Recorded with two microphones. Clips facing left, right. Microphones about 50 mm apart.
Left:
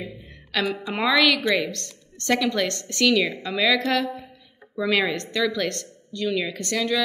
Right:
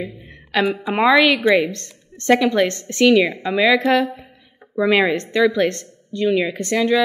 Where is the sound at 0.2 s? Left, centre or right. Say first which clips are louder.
Right 6 dB; right.